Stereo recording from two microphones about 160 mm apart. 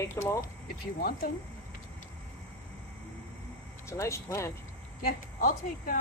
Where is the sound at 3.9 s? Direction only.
20° left (ahead or behind).